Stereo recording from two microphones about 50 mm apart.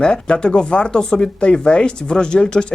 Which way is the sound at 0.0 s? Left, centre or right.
Centre.